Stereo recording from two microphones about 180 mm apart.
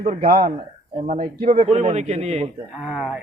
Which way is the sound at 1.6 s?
35° right (ahead or behind).